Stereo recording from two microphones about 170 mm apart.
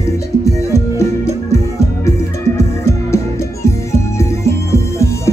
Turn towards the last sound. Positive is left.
turn(degrees=15)  # may be behind; listen again after turning